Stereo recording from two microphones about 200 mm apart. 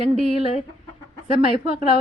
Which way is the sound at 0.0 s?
30° left (ahead or behind).